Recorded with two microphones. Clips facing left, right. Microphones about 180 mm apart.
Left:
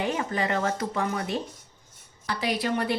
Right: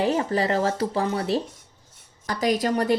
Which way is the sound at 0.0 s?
35° right (ahead or behind).